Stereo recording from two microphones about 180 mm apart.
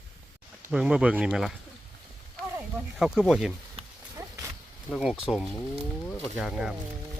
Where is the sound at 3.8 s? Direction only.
35° right (ahead or behind).